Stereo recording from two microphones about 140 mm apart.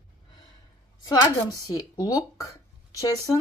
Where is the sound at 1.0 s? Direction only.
25° left (ahead or behind).